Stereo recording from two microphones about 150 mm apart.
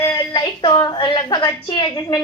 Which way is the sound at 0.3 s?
30° left (ahead or behind).